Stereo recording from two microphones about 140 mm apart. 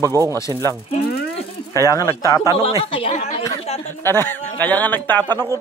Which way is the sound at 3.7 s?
50° left (ahead or behind).